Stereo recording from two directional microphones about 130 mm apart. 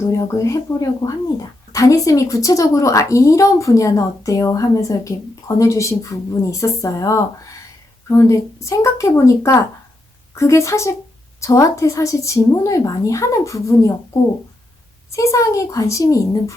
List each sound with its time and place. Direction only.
0.2 s a woman's voice: 25° left (ahead or behind)